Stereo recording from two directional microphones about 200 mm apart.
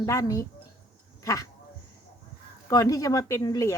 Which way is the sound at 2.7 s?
15° left (ahead or behind).